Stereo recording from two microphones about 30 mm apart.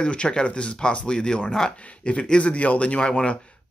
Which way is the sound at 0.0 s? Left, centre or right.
Left.